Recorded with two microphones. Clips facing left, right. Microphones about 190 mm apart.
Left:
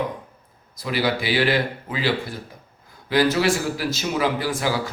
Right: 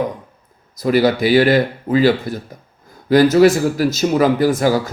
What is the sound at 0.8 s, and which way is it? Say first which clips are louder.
Speech: right 9 dB; 45° right (ahead or behind).